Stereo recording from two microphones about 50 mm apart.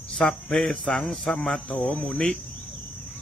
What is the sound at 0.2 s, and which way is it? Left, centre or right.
Speech, centre.